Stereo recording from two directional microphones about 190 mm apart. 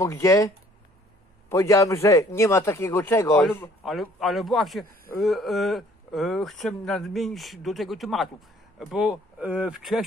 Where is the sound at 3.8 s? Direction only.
Centre (ahead or behind).